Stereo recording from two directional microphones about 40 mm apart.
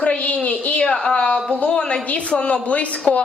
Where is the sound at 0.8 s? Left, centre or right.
Centre.